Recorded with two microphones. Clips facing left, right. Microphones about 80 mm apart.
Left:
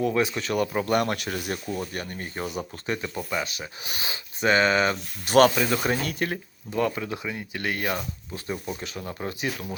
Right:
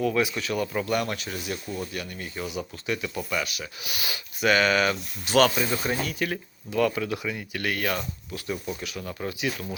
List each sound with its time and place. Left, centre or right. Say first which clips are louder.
0.0 s speech: left 1 dB; left
1.7 s speech: left 2 dB; left
5.2 s speech: left 3 dB; left
5.6 s speech: left 2 dB; left
6.2 s speech: even; left